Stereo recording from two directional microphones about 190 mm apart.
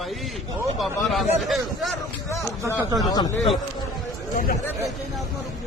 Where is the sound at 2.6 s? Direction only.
15° right (ahead or behind).